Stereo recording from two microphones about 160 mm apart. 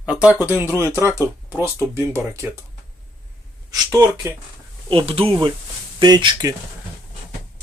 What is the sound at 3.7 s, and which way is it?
Speech, 20° right (ahead or behind).